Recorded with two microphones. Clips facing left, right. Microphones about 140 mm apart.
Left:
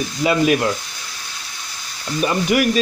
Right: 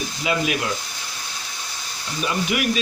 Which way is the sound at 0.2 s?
45° left (ahead or behind).